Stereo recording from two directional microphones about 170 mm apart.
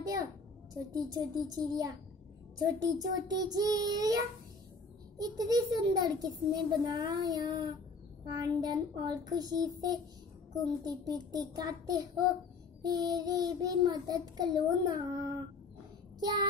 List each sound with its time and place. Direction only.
0.9 s a child's voice: 25° right (ahead or behind)
16.2 s child singing: 25° right (ahead or behind)